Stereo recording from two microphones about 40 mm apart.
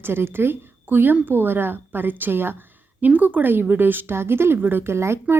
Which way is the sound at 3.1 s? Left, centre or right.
Right.